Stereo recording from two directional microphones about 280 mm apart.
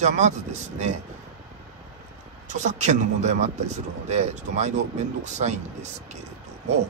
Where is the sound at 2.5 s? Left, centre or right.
Right.